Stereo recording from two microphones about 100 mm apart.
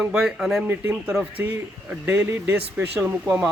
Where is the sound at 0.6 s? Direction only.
20° right (ahead or behind).